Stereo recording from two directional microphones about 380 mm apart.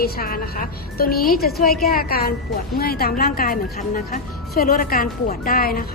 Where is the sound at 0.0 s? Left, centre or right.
Left.